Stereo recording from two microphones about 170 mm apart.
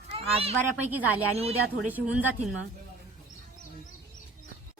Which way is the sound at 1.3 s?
35° right (ahead or behind).